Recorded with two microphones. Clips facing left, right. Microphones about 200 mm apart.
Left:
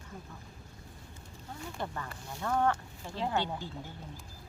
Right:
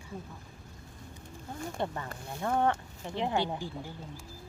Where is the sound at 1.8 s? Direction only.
20° right (ahead or behind).